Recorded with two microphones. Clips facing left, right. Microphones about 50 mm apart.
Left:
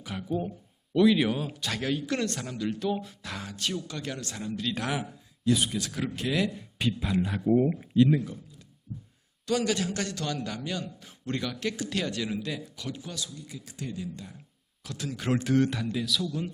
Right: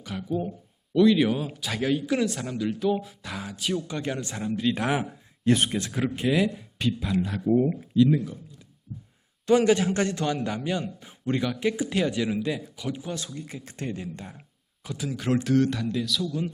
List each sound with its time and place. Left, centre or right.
0.0 s speech: centre
3.8 s a man's voice: right
5.5 s a man's voice: right; by 6.7 s centre
6.7 s speech: centre
7.8 s speech: left
9.5 s a man's voice: right
13.1 s speech: right
14.8 s speech: centre